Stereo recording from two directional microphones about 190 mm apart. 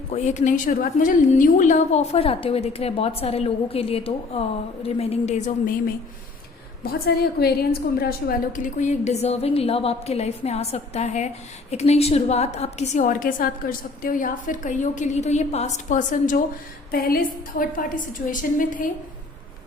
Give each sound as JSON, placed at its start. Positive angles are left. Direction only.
{"t": 0.1, "sound": "a woman's voice", "side_deg": 35}
{"t": 6.8, "sound": "a woman's voice", "side_deg": 55}